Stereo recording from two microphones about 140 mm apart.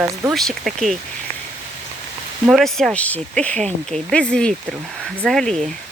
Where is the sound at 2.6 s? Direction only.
5° left (ahead or behind).